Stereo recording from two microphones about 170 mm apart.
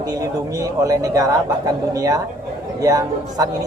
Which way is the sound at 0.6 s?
20° right (ahead or behind).